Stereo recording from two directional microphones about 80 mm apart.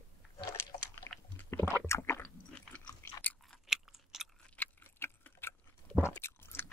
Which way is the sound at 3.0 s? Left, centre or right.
Left.